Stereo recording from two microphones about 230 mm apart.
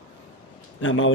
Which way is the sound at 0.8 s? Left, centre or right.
Left.